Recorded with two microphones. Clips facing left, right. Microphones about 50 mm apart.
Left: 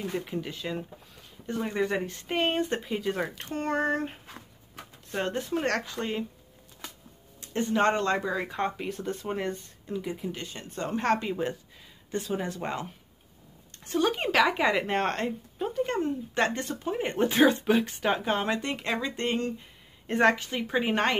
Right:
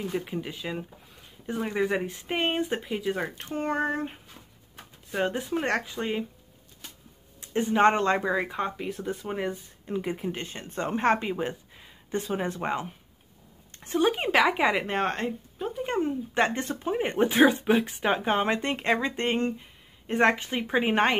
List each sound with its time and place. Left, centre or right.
0.1 s speech: centre
7.3 s speech: centre
8.5 s speech: centre
9.8 s speech: right
14.9 s speech: centre
15.8 s speech: centre
20.1 s speech: centre
20.3 s speech: right